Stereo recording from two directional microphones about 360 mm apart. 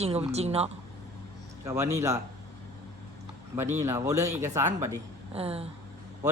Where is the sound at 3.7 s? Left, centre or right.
Centre.